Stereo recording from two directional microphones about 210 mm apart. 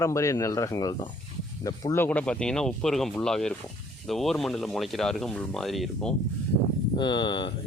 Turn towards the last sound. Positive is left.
turn(degrees=20)  # may be behind; listen again after turning